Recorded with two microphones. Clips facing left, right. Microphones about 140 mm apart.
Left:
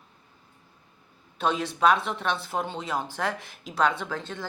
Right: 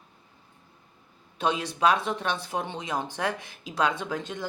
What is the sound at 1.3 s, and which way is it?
Speech, 15° right (ahead or behind).